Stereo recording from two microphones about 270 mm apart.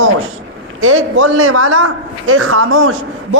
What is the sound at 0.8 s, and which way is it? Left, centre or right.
A woman's voice, right.